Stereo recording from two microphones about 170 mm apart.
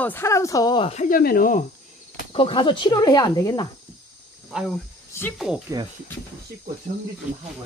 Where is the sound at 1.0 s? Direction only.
60° left (ahead or behind).